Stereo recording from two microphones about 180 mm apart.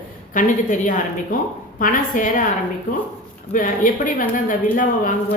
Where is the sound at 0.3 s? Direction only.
45° left (ahead or behind).